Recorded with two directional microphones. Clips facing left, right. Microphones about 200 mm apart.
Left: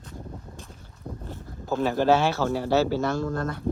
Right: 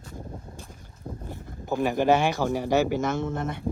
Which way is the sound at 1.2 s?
15° right (ahead or behind).